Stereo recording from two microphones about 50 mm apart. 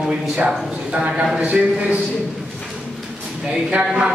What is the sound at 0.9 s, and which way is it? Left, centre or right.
A man's voice, right.